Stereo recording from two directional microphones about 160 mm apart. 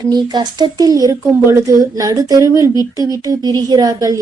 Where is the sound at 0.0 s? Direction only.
25° right (ahead or behind).